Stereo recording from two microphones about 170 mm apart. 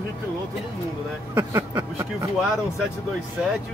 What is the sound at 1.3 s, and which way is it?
Speech, 15° right (ahead or behind).